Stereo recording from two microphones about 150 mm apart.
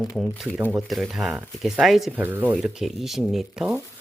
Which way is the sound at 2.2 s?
10° right (ahead or behind).